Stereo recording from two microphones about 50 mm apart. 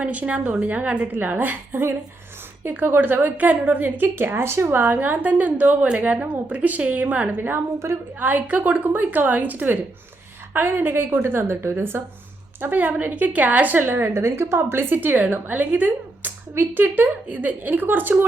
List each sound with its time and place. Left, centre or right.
0.0 s a woman's voice: right
4.8 s a woman's voice: right
7.8 s a woman's voice: right
8.2 s a woman's voice: right
14.1 s a woman's voice: right